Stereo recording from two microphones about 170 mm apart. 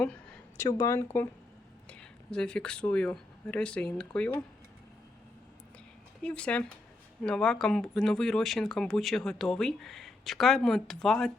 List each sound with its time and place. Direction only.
0.5 s speech: 20° left (ahead or behind)
6.2 s speech: 5° left (ahead or behind)